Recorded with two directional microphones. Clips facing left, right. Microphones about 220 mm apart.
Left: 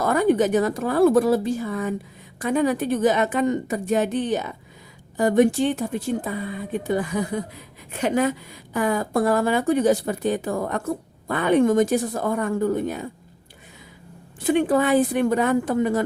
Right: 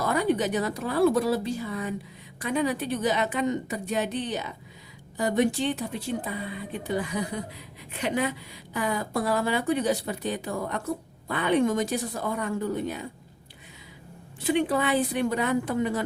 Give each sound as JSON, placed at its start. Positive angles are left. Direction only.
{"t": 0.0, "sound": "a woman's voice", "side_deg": 50}
{"t": 14.4, "sound": "a woman's voice", "side_deg": 45}